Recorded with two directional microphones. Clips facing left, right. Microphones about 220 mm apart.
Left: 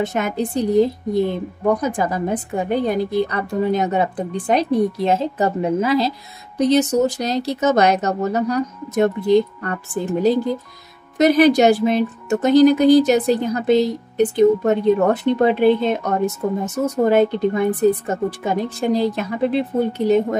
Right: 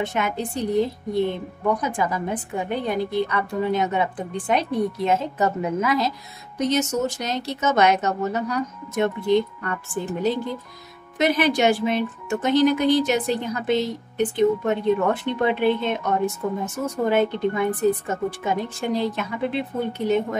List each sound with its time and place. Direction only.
0.0 s a woman's voice: 40° left (ahead or behind)